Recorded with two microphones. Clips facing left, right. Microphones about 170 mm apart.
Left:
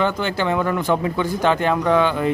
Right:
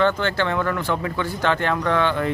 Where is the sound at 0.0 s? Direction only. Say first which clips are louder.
Even; 15° left (ahead or behind).